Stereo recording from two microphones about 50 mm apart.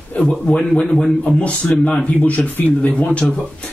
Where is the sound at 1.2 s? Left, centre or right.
Left.